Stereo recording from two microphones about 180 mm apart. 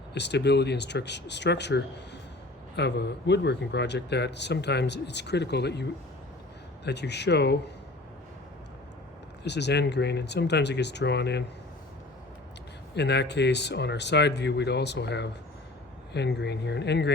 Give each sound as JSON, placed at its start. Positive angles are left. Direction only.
{"t": 0.1, "sound": "speech", "side_deg": 70}
{"t": 9.4, "sound": "speech", "side_deg": 70}
{"t": 12.9, "sound": "speech", "side_deg": 70}